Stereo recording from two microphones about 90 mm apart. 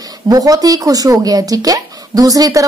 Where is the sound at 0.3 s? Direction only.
40° right (ahead or behind).